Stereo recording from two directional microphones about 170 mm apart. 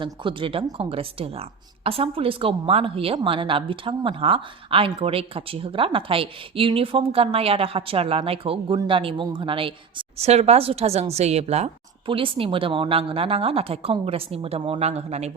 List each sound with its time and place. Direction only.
0.0 s a woman's voice: 30° right (ahead or behind)